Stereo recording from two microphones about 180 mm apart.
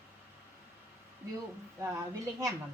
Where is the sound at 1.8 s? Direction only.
15° right (ahead or behind).